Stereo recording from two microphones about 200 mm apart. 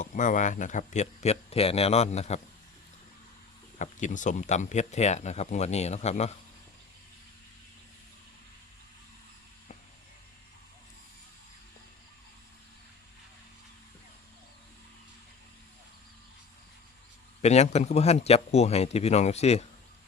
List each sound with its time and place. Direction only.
0.0 s speech: 40° left (ahead or behind)
3.8 s speech: 40° left (ahead or behind)
17.4 s speech: 35° left (ahead or behind)